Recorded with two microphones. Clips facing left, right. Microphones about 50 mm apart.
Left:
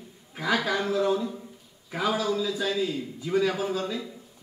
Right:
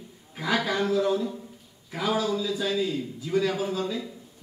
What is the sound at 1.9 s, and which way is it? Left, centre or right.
Speech, left.